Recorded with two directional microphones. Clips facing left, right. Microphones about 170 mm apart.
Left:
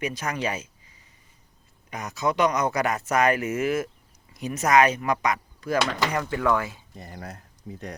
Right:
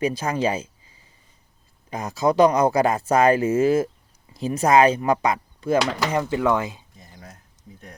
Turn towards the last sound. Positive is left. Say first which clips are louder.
# left 8 dB
turn(degrees=80)